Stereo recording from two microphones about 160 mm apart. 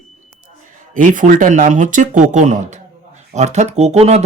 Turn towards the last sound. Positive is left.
turn(degrees=-40)  # may be behind; listen again after turning